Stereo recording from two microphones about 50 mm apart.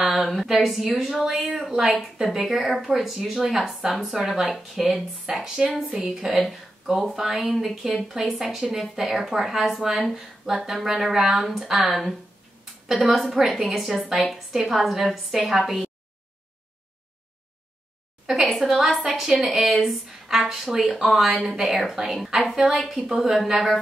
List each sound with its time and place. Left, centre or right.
0.1 s a woman's voice: centre
5.9 s a woman's voice: centre
6.1 s a woman's voice: centre
13.1 s a woman's voice: centre
18.2 s a sound: centre
18.5 s a woman's voice: centre
23.0 s a woman's voice: centre